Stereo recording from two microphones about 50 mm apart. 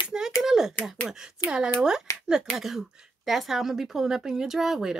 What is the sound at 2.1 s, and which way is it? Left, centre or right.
Speech, left.